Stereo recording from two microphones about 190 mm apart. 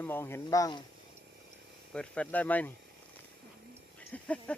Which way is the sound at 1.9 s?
5° left (ahead or behind).